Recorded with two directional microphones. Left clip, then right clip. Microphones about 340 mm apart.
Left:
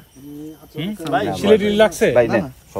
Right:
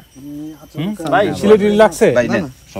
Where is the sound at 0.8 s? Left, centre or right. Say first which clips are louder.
Right 3 dB; centre.